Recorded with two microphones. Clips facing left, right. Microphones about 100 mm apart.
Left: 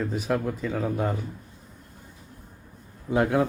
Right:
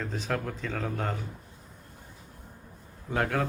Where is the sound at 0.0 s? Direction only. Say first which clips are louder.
Left 6 dB; 10° left (ahead or behind).